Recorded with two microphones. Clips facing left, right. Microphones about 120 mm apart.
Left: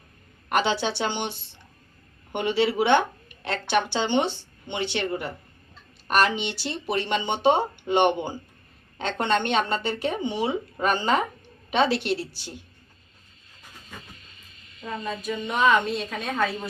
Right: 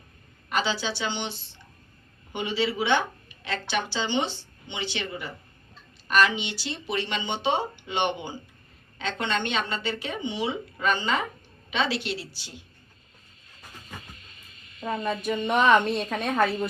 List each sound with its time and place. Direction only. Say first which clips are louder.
0.5 s speech: left 4 dB; 60° left (ahead or behind)
2.3 s speech: left 4 dB; 60° left (ahead or behind)
14.8 s a woman's voice: right 3 dB; 60° right (ahead or behind)